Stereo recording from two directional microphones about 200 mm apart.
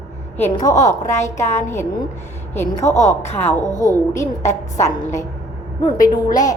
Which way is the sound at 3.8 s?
15° left (ahead or behind).